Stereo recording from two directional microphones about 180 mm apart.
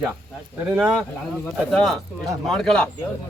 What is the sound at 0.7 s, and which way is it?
Speech, 5° right (ahead or behind).